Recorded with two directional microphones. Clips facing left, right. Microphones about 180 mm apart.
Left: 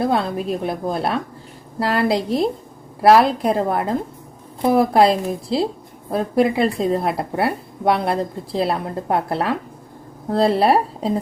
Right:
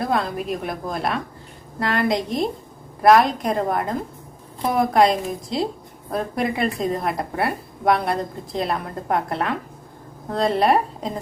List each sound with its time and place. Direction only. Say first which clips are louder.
0.0 s a woman's voice: left 3 dB; 30° left (ahead or behind)